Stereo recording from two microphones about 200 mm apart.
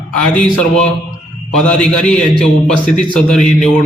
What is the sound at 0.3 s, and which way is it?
A man's voice, 5° left (ahead or behind).